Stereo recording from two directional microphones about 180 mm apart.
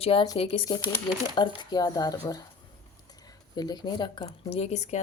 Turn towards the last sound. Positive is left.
turn(degrees=35)  # may be behind; listen again after turning